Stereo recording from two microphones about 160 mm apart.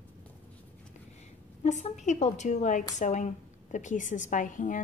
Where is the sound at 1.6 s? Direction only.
50° left (ahead or behind).